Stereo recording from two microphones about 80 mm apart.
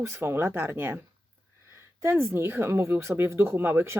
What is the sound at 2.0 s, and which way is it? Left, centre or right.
Speech, right.